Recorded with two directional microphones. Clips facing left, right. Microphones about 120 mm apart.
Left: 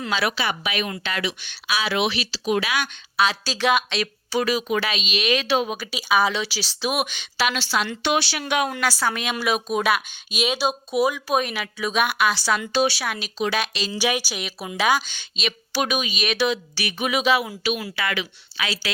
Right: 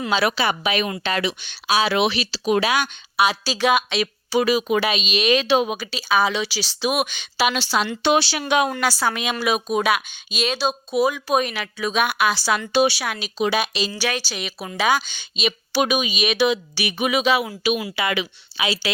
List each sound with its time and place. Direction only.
0.1 s speech: 30° right (ahead or behind)
3.2 s speech: 10° right (ahead or behind)
5.1 s speech: 30° right (ahead or behind)
5.9 s speech: 5° left (ahead or behind)
7.3 s speech: 15° right (ahead or behind)
8.0 s speech: 30° right (ahead or behind)
9.0 s speech: 5° right (ahead or behind)
13.4 s speech: 15° right (ahead or behind)
13.9 s speech: 15° left (ahead or behind); by 17.1 s 15° right (ahead or behind)
17.1 s speech: centre (ahead or behind)
17.9 s speech: 15° right (ahead or behind)